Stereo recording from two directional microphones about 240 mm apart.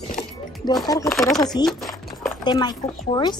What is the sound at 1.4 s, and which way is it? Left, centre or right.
Speech, centre.